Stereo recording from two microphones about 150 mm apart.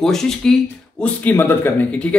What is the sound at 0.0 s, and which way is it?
A man's voice, 5° left (ahead or behind).